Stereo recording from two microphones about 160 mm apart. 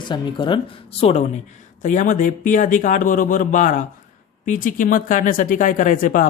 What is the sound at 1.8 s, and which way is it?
Speech, 55° left (ahead or behind).